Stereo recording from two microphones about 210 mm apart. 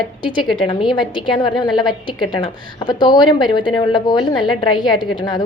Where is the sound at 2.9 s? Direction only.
20° left (ahead or behind).